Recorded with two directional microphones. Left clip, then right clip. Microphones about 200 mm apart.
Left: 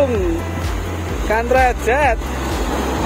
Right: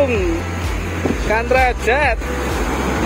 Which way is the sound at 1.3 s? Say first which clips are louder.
Left 1 dB; 15° left (ahead or behind).